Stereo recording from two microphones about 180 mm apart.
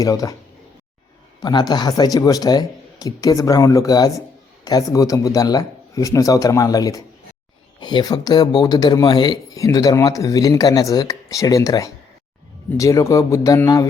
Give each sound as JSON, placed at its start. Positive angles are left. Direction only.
{"t": 0.0, "sound": "speech", "side_deg": 20}
{"t": 1.4, "sound": "speech", "side_deg": 20}